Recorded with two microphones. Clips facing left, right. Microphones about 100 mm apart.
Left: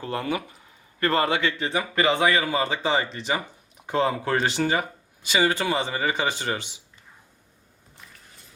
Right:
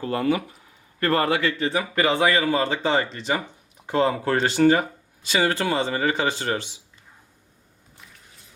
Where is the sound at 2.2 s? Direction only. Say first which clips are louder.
Right 2 dB; 10° left (ahead or behind).